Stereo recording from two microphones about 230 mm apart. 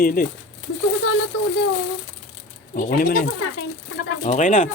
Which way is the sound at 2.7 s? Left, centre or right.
Left.